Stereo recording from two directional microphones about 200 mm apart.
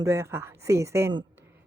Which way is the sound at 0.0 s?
15° right (ahead or behind).